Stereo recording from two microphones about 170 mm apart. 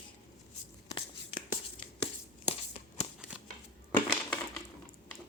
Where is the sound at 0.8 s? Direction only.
30° left (ahead or behind).